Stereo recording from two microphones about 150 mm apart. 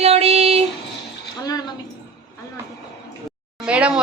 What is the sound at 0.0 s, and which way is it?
Child singing, 45° right (ahead or behind).